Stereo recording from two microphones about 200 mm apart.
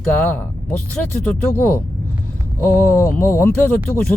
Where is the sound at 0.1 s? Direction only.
5° left (ahead or behind).